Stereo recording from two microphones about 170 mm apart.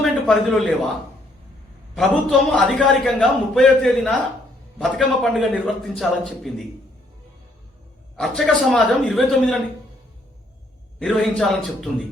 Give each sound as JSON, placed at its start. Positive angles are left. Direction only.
{"t": 0.0, "sound": "a sound", "side_deg": 5}
{"t": 2.0, "sound": "a man's voice", "side_deg": 5}
{"t": 8.1, "sound": "a man's voice", "side_deg": 5}
{"t": 11.0, "sound": "a man's voice", "side_deg": 5}